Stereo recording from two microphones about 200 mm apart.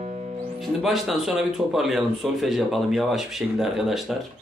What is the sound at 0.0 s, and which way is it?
Music, 35° right (ahead or behind).